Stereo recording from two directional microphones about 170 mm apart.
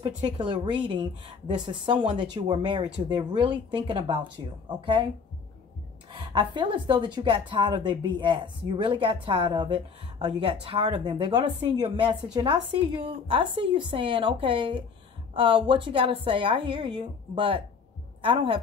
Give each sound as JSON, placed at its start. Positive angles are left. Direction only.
{"t": 0.2, "sound": "speech", "side_deg": -25}
{"t": 6.1, "sound": "speech", "side_deg": -30}